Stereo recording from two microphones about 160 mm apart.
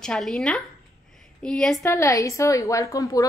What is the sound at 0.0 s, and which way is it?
Speech, 5° left (ahead or behind).